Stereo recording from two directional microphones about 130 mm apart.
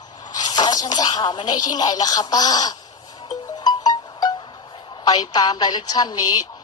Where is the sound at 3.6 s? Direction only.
30° left (ahead or behind).